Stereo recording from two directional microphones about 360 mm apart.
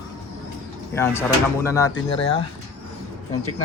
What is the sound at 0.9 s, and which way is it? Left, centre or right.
Speech, centre.